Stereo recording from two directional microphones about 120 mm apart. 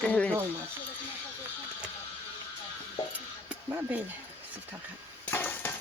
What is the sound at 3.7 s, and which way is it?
Speech, 20° right (ahead or behind).